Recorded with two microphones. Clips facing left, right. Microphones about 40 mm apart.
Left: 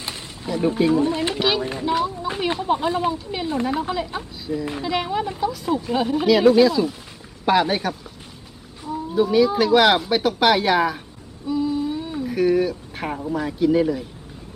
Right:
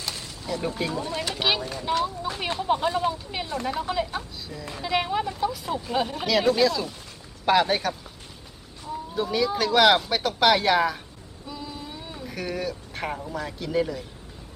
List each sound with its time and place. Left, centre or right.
0.0 s artillery fire: left
0.9 s speech: left
1.4 s speech: centre
1.8 s speech: centre
2.0 s speech: left
2.6 s speech: centre
3.4 s speech: left
3.8 s speech: centre
4.8 s speech: centre
11.4 s a sound: centre
13.2 s speech: centre